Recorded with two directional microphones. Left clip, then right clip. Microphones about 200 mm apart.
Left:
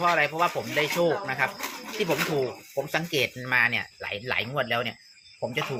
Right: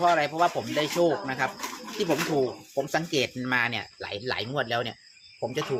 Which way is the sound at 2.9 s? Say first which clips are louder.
Left 1 dB; 20° right (ahead or behind).